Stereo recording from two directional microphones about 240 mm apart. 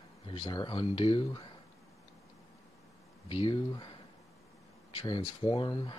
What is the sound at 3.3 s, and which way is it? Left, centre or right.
Speech, left.